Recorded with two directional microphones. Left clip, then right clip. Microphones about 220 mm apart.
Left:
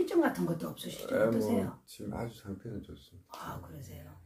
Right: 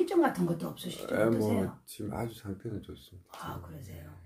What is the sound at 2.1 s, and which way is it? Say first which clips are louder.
Speech: right 2 dB; 45° right (ahead or behind).